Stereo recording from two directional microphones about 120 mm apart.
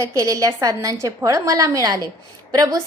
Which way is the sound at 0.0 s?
25° right (ahead or behind).